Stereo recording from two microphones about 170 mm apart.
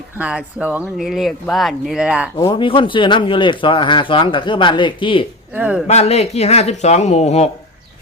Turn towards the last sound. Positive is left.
turn(degrees=40)  # may be behind; listen again after turning